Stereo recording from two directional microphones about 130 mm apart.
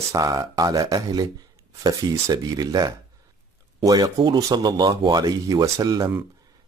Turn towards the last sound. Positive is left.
turn(degrees=-25)  # may be behind; listen again after turning